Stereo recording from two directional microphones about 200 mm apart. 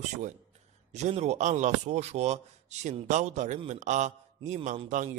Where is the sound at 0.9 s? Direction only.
35° right (ahead or behind).